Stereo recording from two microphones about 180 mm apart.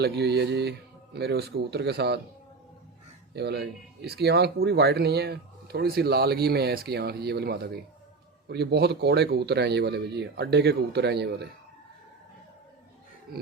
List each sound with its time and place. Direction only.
0.0 s speech: 65° right (ahead or behind)
3.3 s speech: 65° right (ahead or behind)
13.3 s music: 55° right (ahead or behind)